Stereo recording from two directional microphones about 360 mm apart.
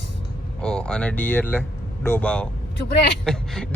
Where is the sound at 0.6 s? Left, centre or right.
Centre.